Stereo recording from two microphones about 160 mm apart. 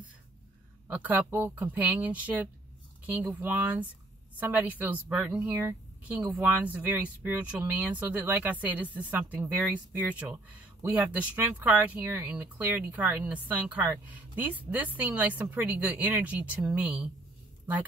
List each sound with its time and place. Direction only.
0.8 s speech: 10° right (ahead or behind)